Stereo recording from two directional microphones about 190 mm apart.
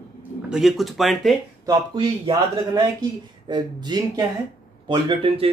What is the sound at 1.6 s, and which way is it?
Speech, 20° right (ahead or behind).